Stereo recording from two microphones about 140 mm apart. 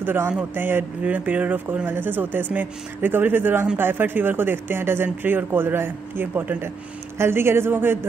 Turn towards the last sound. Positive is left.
turn(degrees=-15)  # may be behind; listen again after turning